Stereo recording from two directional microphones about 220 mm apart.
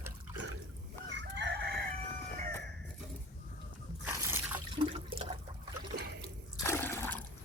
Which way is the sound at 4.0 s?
10° right (ahead or behind).